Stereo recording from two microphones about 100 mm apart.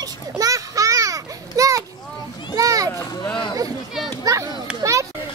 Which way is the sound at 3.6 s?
40° right (ahead or behind).